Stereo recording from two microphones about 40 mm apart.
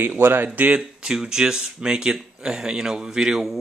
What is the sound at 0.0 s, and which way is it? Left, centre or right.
Speech, right.